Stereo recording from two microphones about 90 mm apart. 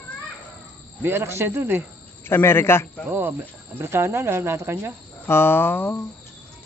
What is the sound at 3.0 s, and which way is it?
Speech, 20° right (ahead or behind).